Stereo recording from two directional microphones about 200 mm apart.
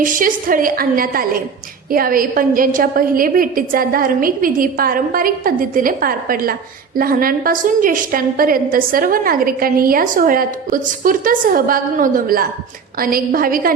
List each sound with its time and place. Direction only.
0.0 s a woman's voice: 45° right (ahead or behind)